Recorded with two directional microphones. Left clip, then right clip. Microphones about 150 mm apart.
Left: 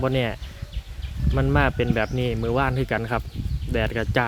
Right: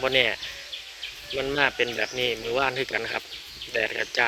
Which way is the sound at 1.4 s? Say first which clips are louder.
Left 1 dB; 20° left (ahead or behind).